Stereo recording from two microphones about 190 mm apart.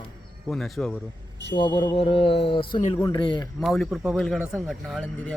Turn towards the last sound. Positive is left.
turn(degrees=0)  # may be behind; listen again after turning